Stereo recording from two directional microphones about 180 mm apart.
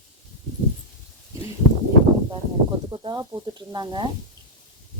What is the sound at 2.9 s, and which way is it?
Speech, 25° right (ahead or behind).